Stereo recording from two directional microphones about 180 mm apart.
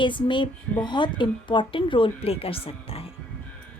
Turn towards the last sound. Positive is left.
turn(degrees=30)  # may be behind; listen again after turning